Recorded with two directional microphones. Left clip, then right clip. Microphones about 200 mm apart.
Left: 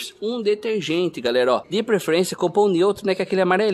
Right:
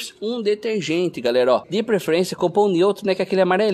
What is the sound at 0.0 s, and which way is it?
Speech, 5° right (ahead or behind).